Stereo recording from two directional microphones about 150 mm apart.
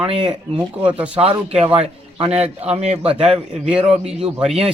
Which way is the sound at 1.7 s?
40° right (ahead or behind).